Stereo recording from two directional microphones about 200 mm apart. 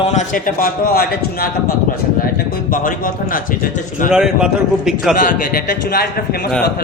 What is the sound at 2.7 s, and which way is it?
A man's voice, 45° left (ahead or behind).